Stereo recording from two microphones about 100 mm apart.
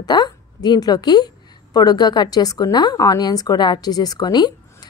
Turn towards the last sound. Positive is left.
turn(degrees=45)  # may be behind; listen again after turning